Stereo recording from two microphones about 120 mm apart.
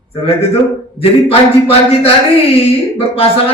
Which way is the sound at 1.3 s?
55° left (ahead or behind).